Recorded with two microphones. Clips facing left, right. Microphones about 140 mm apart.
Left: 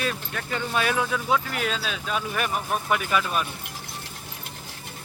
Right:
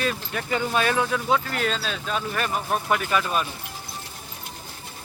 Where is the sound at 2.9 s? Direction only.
5° left (ahead or behind).